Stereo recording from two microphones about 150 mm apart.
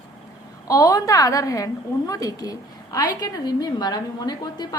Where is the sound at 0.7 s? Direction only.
25° left (ahead or behind).